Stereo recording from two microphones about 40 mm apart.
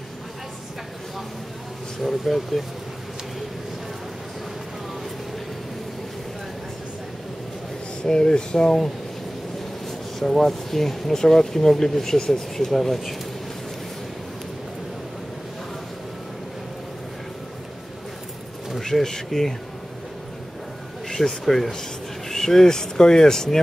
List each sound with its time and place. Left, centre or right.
2.0 s speech: centre
8.0 s speech: centre
9.8 s speech: centre
18.9 s speech: centre
21.1 s speech: centre